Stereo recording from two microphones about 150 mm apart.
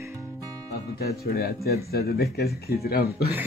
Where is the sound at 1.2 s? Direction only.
90° left.